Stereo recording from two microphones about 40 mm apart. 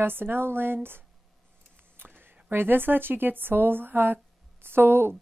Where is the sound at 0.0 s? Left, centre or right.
Right.